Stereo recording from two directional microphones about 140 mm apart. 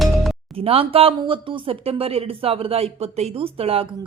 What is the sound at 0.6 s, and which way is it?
Speech, 45° right (ahead or behind).